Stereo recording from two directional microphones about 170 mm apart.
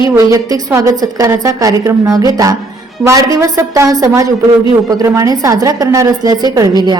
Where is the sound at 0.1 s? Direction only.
20° right (ahead or behind).